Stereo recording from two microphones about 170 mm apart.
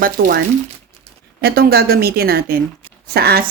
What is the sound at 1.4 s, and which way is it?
A woman's voice, 65° right (ahead or behind).